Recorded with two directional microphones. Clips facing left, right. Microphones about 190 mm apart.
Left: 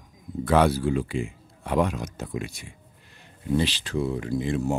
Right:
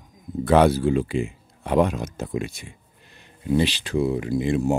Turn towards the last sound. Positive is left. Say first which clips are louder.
# right 4 dB
turn(degrees=-15)  # may be behind; listen again after turning